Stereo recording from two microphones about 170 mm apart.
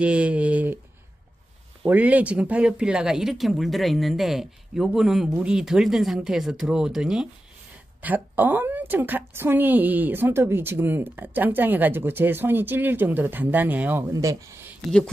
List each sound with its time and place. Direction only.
0.0 s speech: 5° right (ahead or behind)
1.9 s a woman's voice: 10° right (ahead or behind)